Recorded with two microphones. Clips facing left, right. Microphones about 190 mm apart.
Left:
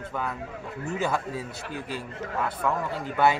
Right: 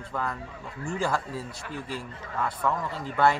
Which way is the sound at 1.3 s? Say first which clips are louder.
Left 1 dB; 70° left (ahead or behind).